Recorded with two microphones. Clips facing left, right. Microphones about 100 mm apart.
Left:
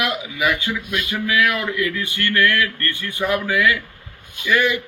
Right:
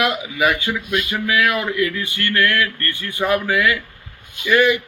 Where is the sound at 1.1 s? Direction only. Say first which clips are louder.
Even; 25° right (ahead or behind).